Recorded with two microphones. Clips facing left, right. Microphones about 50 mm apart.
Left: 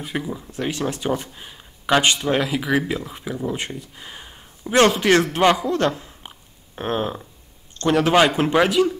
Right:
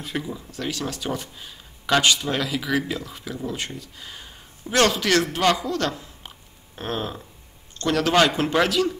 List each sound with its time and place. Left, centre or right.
0.0 s a man's voice: centre